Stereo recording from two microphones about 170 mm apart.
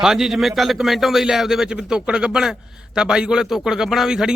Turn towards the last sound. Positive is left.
turn(degrees=-5)  # may be behind; listen again after turning